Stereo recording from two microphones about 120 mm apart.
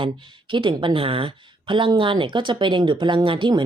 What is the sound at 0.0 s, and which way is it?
Speech, 45° right (ahead or behind).